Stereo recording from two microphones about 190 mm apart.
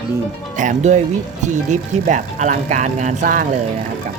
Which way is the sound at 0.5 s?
40° right (ahead or behind).